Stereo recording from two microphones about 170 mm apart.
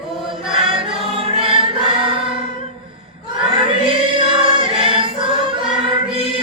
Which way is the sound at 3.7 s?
30° right (ahead or behind).